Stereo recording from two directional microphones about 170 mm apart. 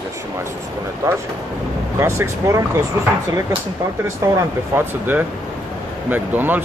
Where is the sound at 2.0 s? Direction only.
15° right (ahead or behind).